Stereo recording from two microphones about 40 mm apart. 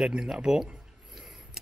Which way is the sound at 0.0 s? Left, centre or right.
Centre.